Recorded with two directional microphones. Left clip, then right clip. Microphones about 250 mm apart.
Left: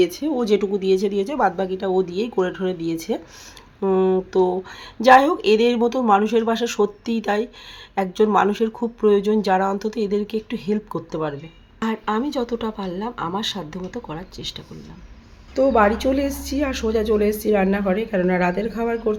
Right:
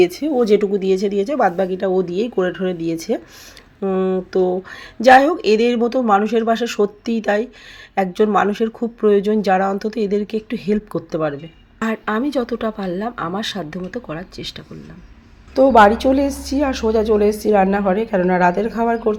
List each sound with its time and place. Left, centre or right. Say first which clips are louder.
0.0 s speech: right 5 dB; centre